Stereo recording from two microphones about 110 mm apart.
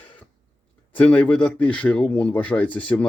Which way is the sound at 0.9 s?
15° left (ahead or behind).